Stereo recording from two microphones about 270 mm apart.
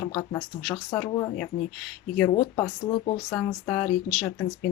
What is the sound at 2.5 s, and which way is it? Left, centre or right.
Speech, centre.